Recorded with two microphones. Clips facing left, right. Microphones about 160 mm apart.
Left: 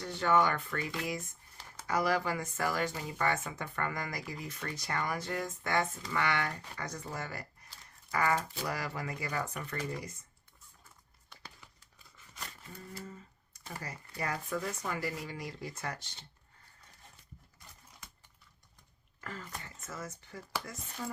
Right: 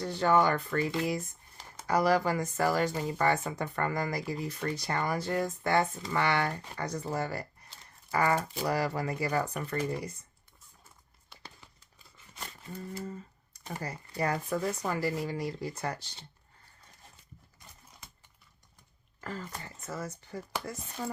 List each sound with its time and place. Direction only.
0.0 s speech: 35° right (ahead or behind)
13.0 s typing: 35° right (ahead or behind)
14.2 s speech: 35° right (ahead or behind)
19.2 s speech: 35° right (ahead or behind)